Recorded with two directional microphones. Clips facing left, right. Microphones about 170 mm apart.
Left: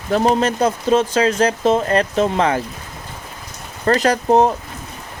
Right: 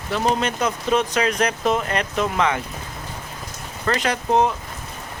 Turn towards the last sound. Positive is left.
turn(degrees=40)  # may be behind; listen again after turning